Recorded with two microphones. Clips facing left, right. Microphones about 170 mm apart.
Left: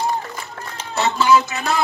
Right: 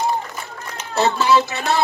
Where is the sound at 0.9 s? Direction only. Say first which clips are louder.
Even; 35° right (ahead or behind).